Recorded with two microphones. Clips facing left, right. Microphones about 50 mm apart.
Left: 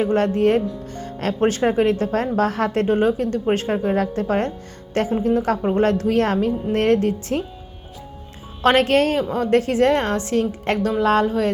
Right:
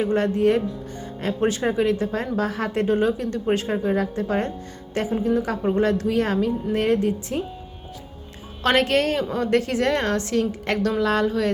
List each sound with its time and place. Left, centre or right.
0.0 s a woman's voice: left
8.6 s a woman's voice: left